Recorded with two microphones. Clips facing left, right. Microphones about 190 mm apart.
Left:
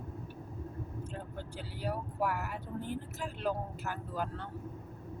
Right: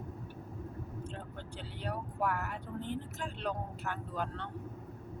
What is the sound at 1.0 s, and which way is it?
Speech, 5° left (ahead or behind).